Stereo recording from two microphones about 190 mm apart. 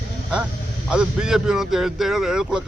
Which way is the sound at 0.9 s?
5° right (ahead or behind).